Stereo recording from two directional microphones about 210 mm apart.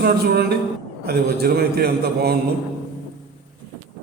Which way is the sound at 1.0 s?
50° right (ahead or behind).